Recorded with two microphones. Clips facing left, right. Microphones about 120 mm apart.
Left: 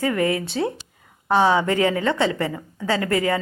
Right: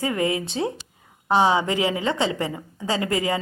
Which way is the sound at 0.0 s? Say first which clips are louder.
Left 2 dB; 20° right (ahead or behind).